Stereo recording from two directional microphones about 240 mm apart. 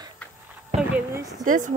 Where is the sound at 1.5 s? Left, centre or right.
Right.